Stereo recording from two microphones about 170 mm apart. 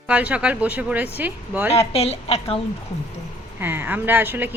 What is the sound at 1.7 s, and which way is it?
Speech, 35° left (ahead or behind).